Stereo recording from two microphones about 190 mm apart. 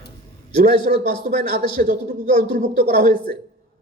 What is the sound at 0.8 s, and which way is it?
A man's voice, 55° right (ahead or behind).